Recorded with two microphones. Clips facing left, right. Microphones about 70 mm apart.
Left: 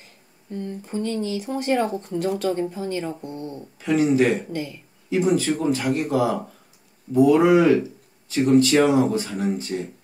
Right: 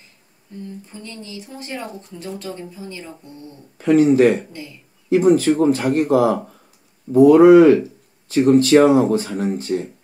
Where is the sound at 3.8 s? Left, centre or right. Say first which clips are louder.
Right 6 dB; right.